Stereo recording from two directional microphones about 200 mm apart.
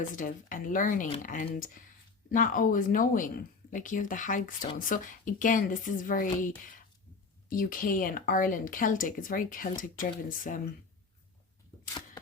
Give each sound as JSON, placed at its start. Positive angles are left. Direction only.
{"t": 0.2, "sound": "speech", "side_deg": 40}
{"t": 7.5, "sound": "speech", "side_deg": 45}